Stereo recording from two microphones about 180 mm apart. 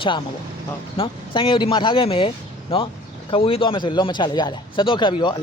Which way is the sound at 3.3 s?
30° left (ahead or behind).